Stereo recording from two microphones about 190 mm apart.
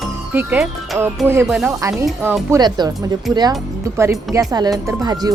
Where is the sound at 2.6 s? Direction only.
20° right (ahead or behind).